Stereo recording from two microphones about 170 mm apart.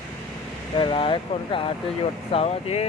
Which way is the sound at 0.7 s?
30° left (ahead or behind).